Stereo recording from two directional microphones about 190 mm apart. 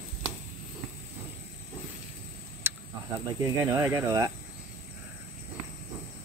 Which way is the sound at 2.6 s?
10° right (ahead or behind).